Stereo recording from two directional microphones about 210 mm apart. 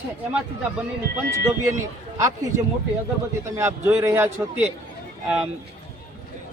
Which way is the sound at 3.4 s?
15° right (ahead or behind).